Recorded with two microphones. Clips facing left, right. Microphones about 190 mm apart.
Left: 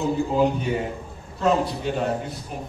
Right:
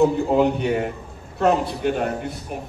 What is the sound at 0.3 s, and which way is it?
A man's voice, 65° right (ahead or behind).